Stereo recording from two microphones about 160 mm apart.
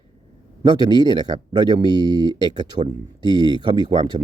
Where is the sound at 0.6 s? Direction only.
25° right (ahead or behind).